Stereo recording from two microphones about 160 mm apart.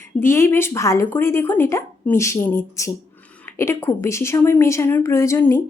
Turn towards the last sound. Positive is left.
turn(degrees=15)  # may be behind; listen again after turning